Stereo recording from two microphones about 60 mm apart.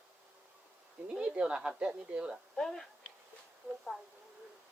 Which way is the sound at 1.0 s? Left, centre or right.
Right.